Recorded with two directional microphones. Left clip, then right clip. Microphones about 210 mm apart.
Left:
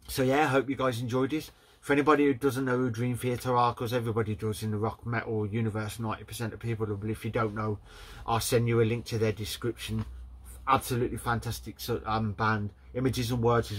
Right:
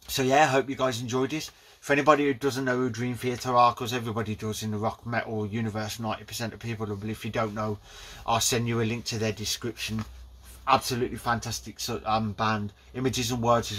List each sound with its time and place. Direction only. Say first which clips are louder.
0.1 s speech: right 4 dB; 15° right (ahead or behind)